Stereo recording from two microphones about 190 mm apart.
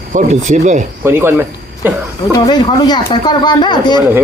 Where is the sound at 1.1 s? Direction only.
10° right (ahead or behind).